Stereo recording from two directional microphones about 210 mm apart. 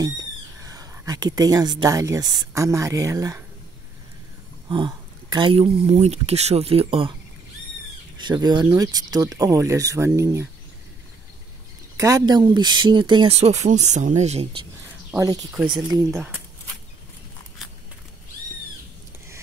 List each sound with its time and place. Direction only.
0.0 s speech: 15° right (ahead or behind)
4.6 s speech: 25° right (ahead or behind)
8.2 s speech: 20° right (ahead or behind)
12.0 s speech: 15° right (ahead or behind)
15.0 s speech: 15° right (ahead or behind)